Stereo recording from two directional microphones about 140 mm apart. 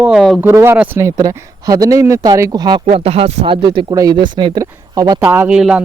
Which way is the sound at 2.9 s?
45° right (ahead or behind).